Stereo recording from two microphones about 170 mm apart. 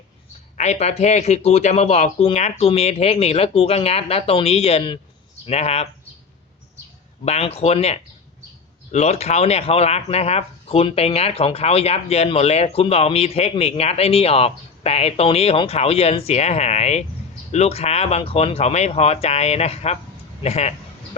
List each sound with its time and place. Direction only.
0.5 s speech: 40° left (ahead or behind)
7.3 s speech: 35° left (ahead or behind)
20.4 s a sound: 40° left (ahead or behind)